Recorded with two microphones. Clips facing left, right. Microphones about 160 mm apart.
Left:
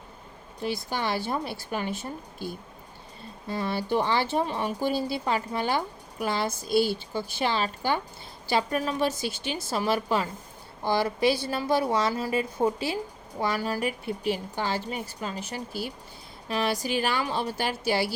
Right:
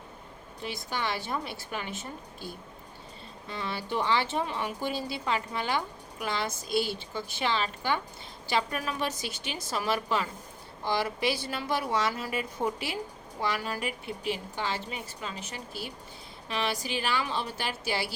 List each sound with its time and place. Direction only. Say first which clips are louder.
0.6 s speech: left 4 dB; 40° left (ahead or behind)
3.5 s speech: left 6 dB; 40° left (ahead or behind)
11.4 s speech: left 6 dB; 30° left (ahead or behind)